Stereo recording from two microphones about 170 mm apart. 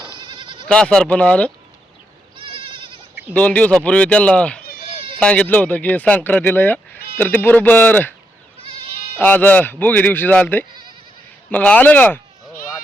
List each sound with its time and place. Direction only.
0.2 s goat: 25° right (ahead or behind)
0.7 s speech: 5° left (ahead or behind)
2.4 s goat: 30° right (ahead or behind)
3.3 s speech: 10° left (ahead or behind)
9.1 s speech: 10° left (ahead or behind)